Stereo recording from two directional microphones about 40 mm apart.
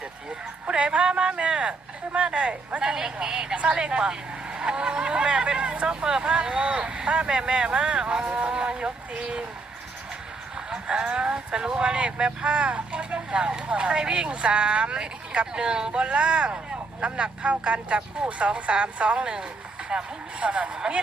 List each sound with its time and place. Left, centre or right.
0.3 s a sound: right
2.1 s speech: right
2.9 s a woman's voice: centre
3.6 s speech: right
10.7 s speech: right